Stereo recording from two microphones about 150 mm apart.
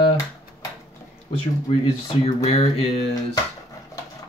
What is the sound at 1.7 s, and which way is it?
Speech, 45° left (ahead or behind).